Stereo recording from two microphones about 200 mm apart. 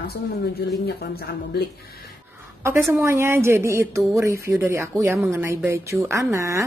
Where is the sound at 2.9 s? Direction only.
10° right (ahead or behind).